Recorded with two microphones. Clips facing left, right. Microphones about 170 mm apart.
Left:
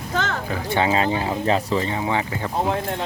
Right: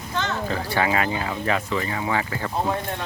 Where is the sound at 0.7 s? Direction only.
25° left (ahead or behind).